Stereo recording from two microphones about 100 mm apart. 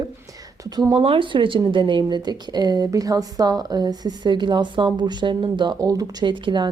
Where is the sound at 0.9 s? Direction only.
65° right (ahead or behind).